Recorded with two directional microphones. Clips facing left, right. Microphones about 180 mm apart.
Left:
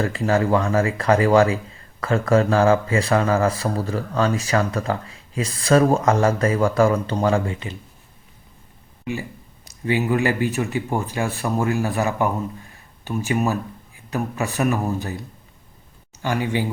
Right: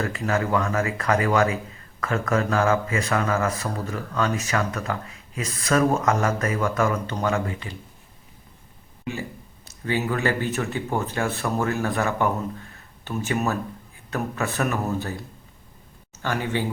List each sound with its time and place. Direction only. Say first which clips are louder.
0.0 s speech: left 5 dB; 30° left (ahead or behind)
9.6 s speech: left 4 dB; 15° left (ahead or behind)
16.1 s speech: left 3 dB; 15° left (ahead or behind)